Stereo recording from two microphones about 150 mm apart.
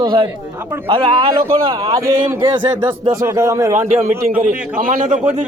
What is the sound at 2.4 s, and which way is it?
Speech, 35° right (ahead or behind).